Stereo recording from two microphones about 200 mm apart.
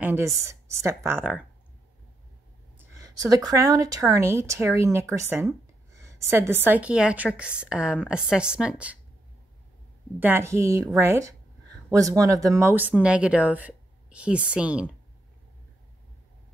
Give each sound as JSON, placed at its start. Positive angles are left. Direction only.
{"t": 0.0, "sound": "speech", "side_deg": -10}
{"t": 2.8, "sound": "a woman's voice", "side_deg": -15}
{"t": 10.2, "sound": "speech", "side_deg": -10}